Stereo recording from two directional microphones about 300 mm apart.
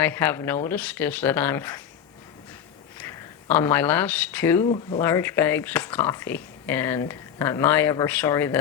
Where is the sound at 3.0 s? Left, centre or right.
Centre.